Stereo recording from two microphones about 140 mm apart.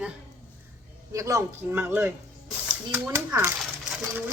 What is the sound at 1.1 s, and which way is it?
Speech, 20° right (ahead or behind).